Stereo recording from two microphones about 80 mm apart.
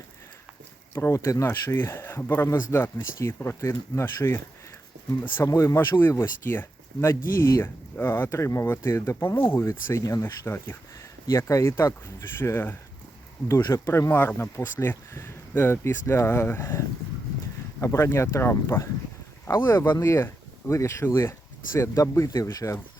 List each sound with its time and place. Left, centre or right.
0.9 s speech: left
5.5 s speech: left
10.0 s speech: left
10.2 s speech: left
11.3 s speech: left
13.5 s speech: left
14.1 s speech: left